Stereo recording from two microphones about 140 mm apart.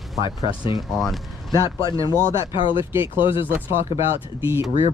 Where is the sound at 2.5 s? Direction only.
35° left (ahead or behind).